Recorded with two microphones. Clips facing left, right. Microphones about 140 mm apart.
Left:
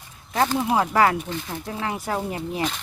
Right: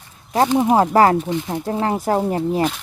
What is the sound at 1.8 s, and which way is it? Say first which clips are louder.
Speech: right 7 dB; 40° right (ahead or behind).